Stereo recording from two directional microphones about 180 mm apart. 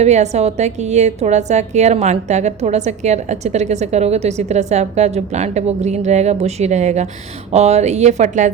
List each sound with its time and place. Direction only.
0.0 s a woman's voice: 40° right (ahead or behind)